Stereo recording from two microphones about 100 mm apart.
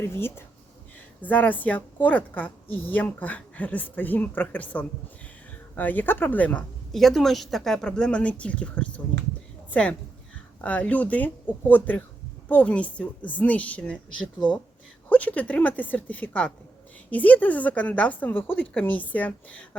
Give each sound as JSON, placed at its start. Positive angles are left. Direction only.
{"t": 0.0, "sound": "a woman's voice", "side_deg": 25}
{"t": 6.9, "sound": "a woman's voice", "side_deg": 0}
{"t": 15.1, "sound": "a woman's voice", "side_deg": 15}